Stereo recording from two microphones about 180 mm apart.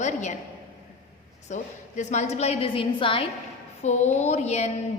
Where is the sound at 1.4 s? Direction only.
40° left (ahead or behind).